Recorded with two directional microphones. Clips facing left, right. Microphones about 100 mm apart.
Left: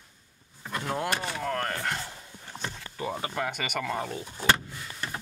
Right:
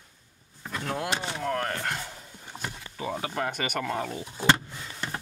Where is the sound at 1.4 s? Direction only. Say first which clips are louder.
Right 3 dB; 5° right (ahead or behind).